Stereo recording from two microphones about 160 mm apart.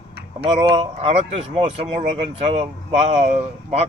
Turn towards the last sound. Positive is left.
turn(degrees=-40)  # may be behind; listen again after turning